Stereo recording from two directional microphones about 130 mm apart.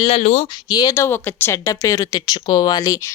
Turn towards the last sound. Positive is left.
turn(degrees=25)  # may be behind; listen again after turning